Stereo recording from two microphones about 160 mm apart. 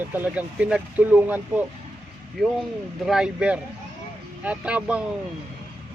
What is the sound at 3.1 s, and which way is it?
Speech, 5° right (ahead or behind).